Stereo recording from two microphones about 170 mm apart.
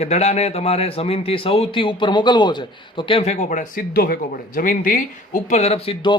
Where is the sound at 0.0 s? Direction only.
40° left (ahead or behind).